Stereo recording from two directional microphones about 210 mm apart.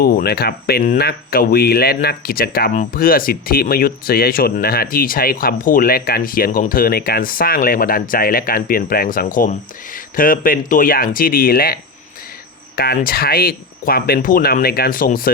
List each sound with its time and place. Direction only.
0.0 s speech: 45° left (ahead or behind)